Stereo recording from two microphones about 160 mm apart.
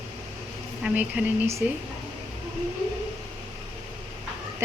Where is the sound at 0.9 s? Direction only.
10° right (ahead or behind).